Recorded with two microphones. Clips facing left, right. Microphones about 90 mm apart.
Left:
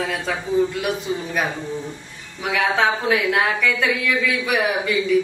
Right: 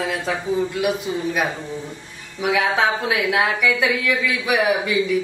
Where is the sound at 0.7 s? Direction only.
5° right (ahead or behind).